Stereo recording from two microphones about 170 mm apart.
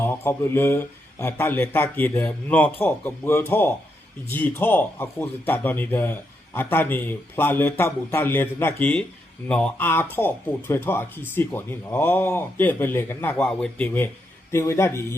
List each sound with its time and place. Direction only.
0.0 s a man's voice: 15° left (ahead or behind)